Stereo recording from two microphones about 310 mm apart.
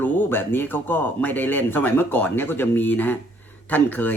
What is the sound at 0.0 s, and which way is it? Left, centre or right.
Speech, centre.